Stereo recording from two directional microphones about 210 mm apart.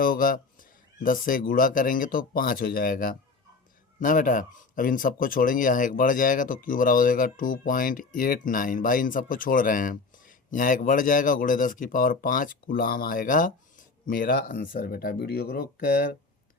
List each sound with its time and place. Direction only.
0.0 s speech: 40° left (ahead or behind)